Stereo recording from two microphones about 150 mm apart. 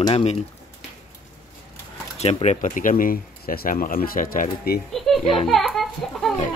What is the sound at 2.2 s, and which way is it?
Speech, 45° left (ahead or behind).